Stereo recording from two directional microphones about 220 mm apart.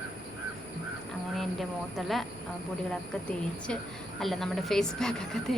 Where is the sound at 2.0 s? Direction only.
Centre (ahead or behind).